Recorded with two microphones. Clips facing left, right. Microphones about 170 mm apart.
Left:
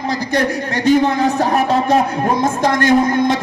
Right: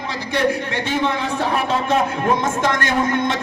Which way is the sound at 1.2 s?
45° left (ahead or behind).